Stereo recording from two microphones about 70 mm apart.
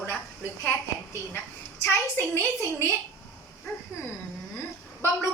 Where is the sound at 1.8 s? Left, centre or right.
Left.